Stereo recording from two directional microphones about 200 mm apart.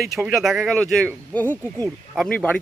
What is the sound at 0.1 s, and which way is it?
Speech, centre (ahead or behind).